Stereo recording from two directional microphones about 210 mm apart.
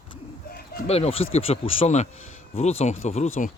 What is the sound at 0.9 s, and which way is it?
Speech, 30° left (ahead or behind).